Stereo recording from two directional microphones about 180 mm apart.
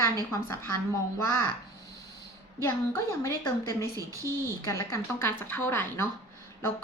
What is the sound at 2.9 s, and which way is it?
A woman's voice, 15° left (ahead or behind).